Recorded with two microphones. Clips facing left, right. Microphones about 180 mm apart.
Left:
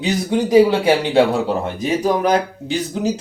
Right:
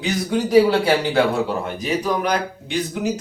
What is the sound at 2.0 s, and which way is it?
Speech, 30° left (ahead or behind).